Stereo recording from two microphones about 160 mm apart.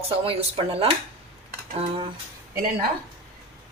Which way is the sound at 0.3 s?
40° right (ahead or behind).